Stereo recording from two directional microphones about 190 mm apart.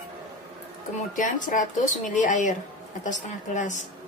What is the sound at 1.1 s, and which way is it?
Speech, 45° left (ahead or behind).